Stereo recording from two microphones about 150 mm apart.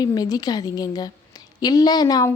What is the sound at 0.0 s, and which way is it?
A woman's voice, 25° left (ahead or behind).